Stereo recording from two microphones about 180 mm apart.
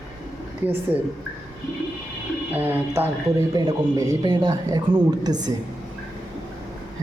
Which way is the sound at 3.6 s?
20° right (ahead or behind).